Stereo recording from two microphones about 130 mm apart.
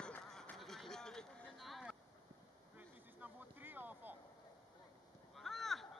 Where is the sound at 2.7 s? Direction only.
15° right (ahead or behind).